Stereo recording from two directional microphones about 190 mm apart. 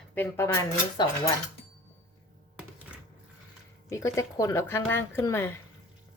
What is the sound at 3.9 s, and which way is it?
Speech, 15° left (ahead or behind).